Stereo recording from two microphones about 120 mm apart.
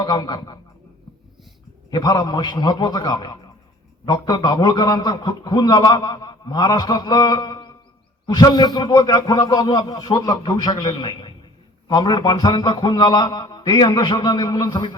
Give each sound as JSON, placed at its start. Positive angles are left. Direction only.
{"t": 0.0, "sound": "a man's voice", "side_deg": 35}
{"t": 1.9, "sound": "a man's voice", "side_deg": 35}